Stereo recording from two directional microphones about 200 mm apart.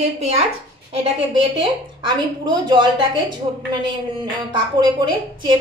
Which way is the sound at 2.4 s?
25° right (ahead or behind).